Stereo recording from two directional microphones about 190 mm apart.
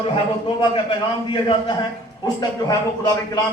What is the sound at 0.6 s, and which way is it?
A man's voice, 25° left (ahead or behind).